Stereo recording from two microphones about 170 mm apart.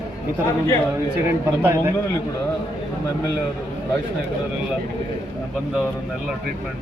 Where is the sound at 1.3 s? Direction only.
15° right (ahead or behind).